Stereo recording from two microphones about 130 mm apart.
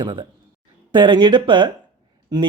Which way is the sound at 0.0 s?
40° right (ahead or behind).